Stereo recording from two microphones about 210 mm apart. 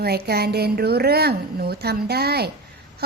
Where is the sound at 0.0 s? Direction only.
50° right (ahead or behind).